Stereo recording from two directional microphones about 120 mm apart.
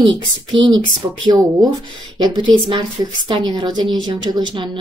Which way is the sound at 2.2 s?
35° right (ahead or behind).